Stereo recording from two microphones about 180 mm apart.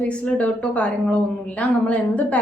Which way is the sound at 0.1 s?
5° left (ahead or behind).